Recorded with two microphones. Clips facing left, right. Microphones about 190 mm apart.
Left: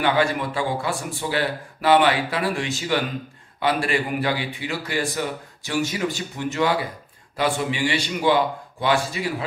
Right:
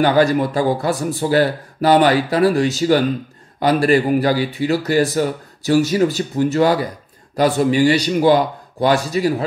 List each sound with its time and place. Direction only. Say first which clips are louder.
0.0 s speech: right 7 dB; 40° right (ahead or behind)